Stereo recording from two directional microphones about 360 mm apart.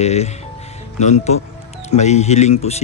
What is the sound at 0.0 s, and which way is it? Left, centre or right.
Speech, centre.